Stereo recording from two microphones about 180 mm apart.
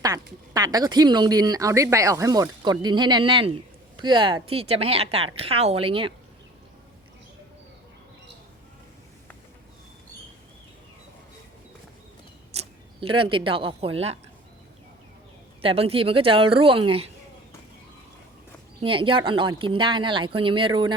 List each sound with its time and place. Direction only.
0.5 s speech: 20° right (ahead or behind)
12.5 s speech: 30° right (ahead or behind)
15.6 s speech: 30° right (ahead or behind)
18.8 s speech: 30° right (ahead or behind)